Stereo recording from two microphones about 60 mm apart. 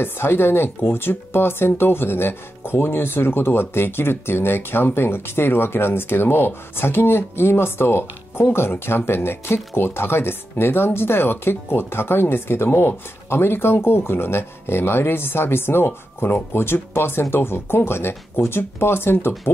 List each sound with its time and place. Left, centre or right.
0.0 s speech: left